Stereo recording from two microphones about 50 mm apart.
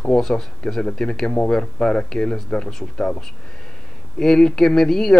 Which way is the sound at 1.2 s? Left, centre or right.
Left.